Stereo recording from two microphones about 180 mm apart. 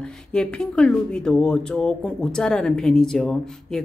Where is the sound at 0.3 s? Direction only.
5° left (ahead or behind).